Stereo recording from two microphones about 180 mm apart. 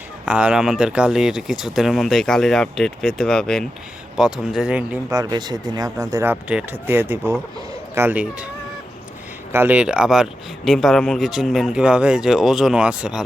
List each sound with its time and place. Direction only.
0.3 s speech: 5° right (ahead or behind)
5.1 s speech: 20° right (ahead or behind)
6.3 s speech: 5° right (ahead or behind)
9.5 s speech: 10° right (ahead or behind)